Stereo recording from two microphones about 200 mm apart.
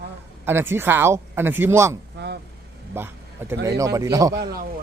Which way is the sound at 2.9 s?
10° right (ahead or behind).